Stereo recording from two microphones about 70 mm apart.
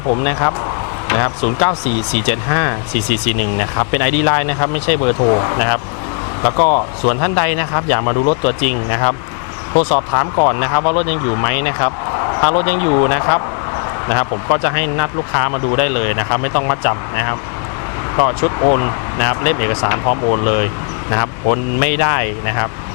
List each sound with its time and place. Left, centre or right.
0.1 s speech: left